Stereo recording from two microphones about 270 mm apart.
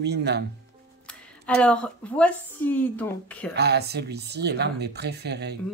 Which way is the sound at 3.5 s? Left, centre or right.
Right.